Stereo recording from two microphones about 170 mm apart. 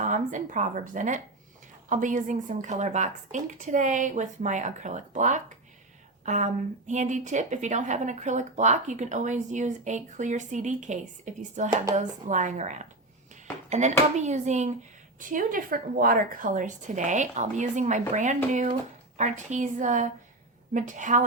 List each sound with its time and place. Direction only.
0.0 s a woman's voice: 45° right (ahead or behind)